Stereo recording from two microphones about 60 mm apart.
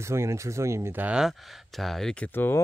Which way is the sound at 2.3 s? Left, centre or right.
Left.